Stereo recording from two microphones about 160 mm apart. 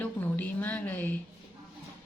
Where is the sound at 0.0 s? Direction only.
10° left (ahead or behind).